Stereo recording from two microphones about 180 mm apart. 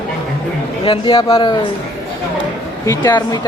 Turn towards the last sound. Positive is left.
turn(degrees=25)  # may be behind; listen again after turning